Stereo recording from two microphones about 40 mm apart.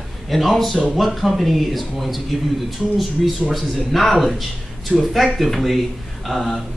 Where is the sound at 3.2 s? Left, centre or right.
Centre.